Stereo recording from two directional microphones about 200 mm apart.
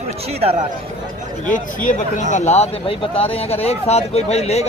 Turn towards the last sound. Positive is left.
turn(degrees=30)  # may be behind; listen again after turning